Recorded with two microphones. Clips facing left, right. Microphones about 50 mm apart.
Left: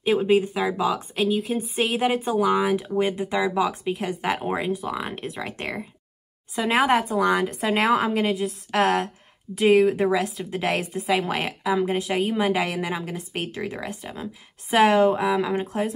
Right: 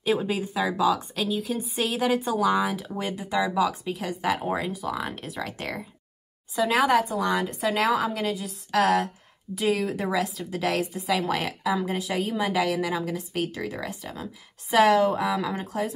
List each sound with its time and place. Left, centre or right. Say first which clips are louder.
0.0 s a woman's voice: left 6 dB; left